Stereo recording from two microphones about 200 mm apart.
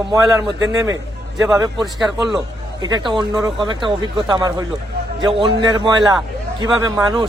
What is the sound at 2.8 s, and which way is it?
Speech, 20° right (ahead or behind).